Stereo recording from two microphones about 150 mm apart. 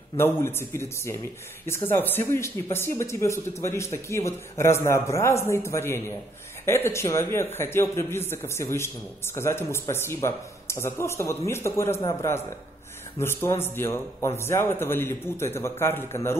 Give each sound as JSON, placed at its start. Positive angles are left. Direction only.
{"t": 0.2, "sound": "a man's voice", "side_deg": 15}